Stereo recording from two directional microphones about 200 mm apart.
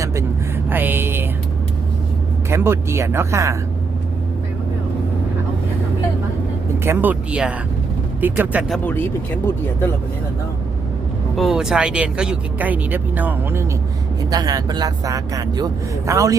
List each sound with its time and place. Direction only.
0.7 s a sound: 10° right (ahead or behind)
2.5 s speech: 15° right (ahead or behind)
6.8 s speech: 10° right (ahead or behind)
8.8 s speech: 10° left (ahead or behind)
11.3 s speech: centre (ahead or behind)